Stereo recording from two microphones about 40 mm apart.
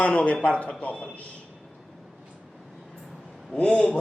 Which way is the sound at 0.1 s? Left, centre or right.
Left.